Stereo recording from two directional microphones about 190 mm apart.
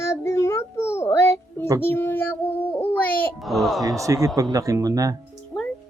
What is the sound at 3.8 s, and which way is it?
Speech, 15° right (ahead or behind).